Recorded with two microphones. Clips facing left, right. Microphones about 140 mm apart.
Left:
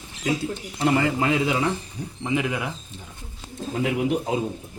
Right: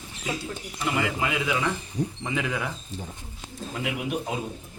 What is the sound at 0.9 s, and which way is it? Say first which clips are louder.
Speech: left 6 dB; 35° left (ahead or behind).